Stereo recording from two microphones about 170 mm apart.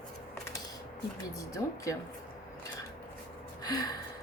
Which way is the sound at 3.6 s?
20° left (ahead or behind).